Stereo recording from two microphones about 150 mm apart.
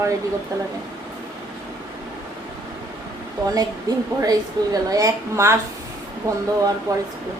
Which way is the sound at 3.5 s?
25° right (ahead or behind).